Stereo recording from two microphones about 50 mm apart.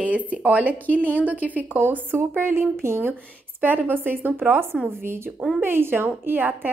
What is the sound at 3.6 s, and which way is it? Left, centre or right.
Speech, right.